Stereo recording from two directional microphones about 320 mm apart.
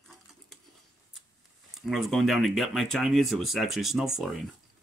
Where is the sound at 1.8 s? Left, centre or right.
Centre.